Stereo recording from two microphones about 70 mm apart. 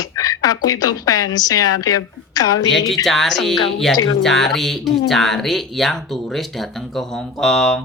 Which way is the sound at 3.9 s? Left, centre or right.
Left.